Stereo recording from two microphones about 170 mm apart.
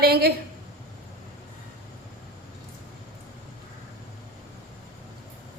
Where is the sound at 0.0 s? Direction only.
65° right (ahead or behind).